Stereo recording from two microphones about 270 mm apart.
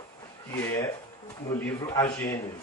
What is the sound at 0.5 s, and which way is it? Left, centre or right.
Speech, centre.